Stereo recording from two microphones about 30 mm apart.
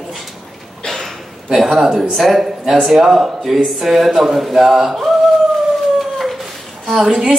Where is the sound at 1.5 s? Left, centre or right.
Centre.